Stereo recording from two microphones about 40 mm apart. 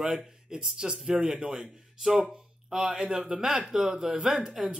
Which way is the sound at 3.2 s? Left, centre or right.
Right.